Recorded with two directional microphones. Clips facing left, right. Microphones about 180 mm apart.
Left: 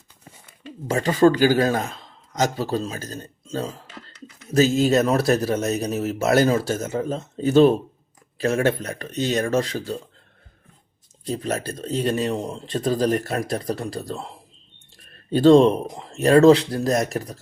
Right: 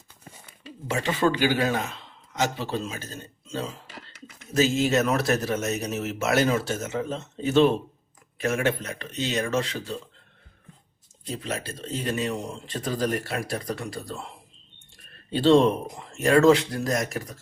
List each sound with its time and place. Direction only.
0.9 s a man's voice: 40° left (ahead or behind)
11.3 s a man's voice: 40° left (ahead or behind)